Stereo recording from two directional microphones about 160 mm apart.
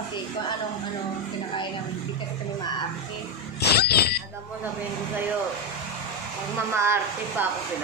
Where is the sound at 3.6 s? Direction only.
85° left.